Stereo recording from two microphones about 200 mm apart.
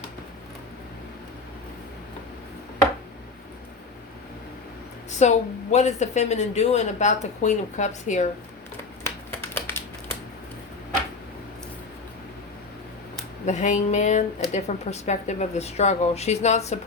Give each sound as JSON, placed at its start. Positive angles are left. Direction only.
{"t": 5.2, "sound": "a woman's voice", "side_deg": 35}
{"t": 9.0, "sound": "typing", "side_deg": 10}
{"t": 13.4, "sound": "a woman's voice", "side_deg": 35}